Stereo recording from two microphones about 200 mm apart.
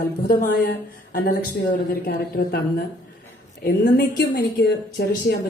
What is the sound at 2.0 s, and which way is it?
Speech, 50° left (ahead or behind).